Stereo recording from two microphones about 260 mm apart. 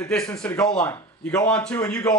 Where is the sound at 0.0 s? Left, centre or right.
Centre.